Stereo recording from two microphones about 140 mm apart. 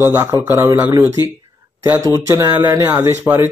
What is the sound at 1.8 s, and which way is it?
Speech, 20° right (ahead or behind).